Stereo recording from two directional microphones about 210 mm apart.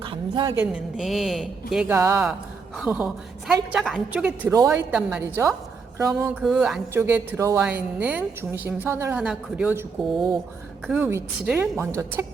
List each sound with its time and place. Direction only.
0.0 s a sound: 25° right (ahead or behind)
0.5 s a woman's voice: 5° right (ahead or behind)
2.7 s a woman's voice: centre (ahead or behind)